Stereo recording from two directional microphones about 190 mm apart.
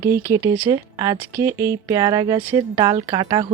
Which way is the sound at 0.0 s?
15° right (ahead or behind).